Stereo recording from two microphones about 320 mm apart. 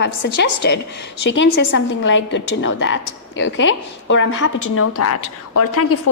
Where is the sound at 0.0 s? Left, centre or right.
Left.